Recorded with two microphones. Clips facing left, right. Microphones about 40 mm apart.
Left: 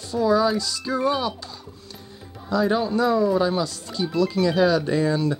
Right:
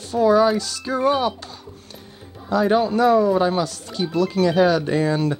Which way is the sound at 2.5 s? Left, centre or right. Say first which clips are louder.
Right 3 dB; right.